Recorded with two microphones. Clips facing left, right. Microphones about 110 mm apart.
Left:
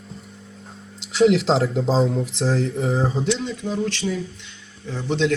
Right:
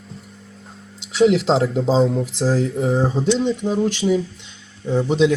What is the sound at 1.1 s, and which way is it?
Speech, centre (ahead or behind).